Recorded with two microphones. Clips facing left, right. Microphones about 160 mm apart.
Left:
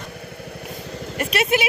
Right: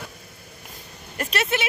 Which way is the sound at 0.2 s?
70° left (ahead or behind).